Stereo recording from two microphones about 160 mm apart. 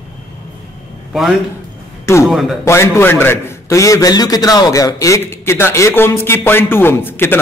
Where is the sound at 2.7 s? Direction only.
15° left (ahead or behind).